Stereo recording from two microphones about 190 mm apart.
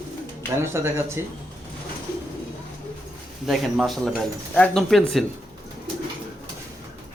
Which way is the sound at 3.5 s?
Centre (ahead or behind).